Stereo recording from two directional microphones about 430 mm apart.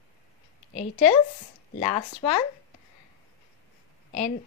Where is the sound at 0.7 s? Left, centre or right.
Centre.